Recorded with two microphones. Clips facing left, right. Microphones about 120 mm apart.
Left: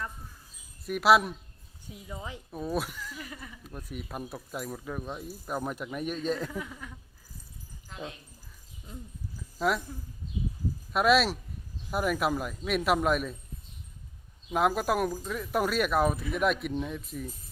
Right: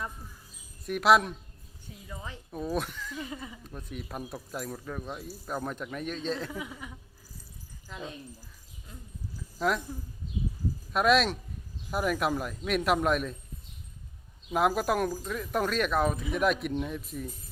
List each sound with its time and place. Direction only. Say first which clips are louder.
0.9 s speech: even; centre (ahead or behind)
1.9 s speech: left 2 dB; 15° left (ahead or behind)
2.5 s speech: even; centre (ahead or behind)
3.2 s speech: right 5 dB; 20° right (ahead or behind)
3.6 s speech: even; 5° left (ahead or behind)
6.5 s speech: even; 15° right (ahead or behind)
9.6 s speech: even; 5° left (ahead or behind)
10.9 s speech: even; centre (ahead or behind)
14.5 s speech: even; centre (ahead or behind)